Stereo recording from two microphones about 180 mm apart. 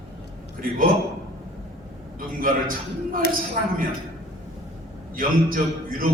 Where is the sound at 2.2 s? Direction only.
50° right (ahead or behind).